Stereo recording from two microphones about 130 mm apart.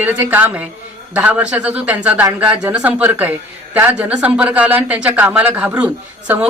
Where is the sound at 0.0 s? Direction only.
15° right (ahead or behind).